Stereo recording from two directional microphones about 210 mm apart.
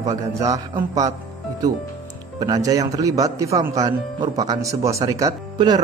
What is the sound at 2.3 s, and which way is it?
Speech, 15° right (ahead or behind).